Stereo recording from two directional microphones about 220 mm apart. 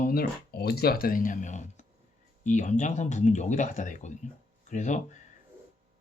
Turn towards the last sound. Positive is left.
turn(degrees=35)  # may be behind; listen again after turning